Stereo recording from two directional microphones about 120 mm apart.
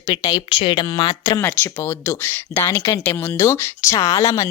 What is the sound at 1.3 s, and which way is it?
Speech, 20° left (ahead or behind).